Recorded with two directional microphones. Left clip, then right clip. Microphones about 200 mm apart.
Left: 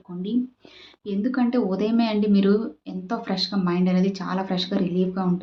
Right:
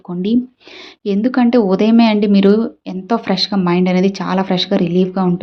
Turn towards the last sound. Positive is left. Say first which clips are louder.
# right 9 dB
turn(degrees=-45)  # may be behind; listen again after turning